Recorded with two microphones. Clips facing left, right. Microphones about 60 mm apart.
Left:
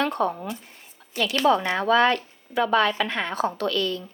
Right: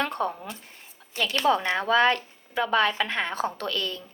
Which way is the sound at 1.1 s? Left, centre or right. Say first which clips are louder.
Left 3 dB; right.